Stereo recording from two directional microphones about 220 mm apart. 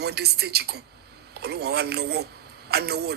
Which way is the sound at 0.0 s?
45° right (ahead or behind).